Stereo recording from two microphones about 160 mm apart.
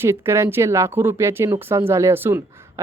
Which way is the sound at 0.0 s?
15° right (ahead or behind).